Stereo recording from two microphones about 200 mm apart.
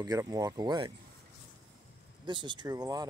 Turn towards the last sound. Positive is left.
turn(degrees=-20)  # may be behind; listen again after turning